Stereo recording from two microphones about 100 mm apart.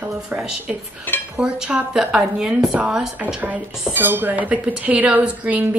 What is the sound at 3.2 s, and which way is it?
Speech, 15° right (ahead or behind).